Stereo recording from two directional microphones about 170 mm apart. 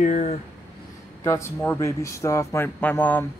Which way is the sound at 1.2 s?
15° left (ahead or behind).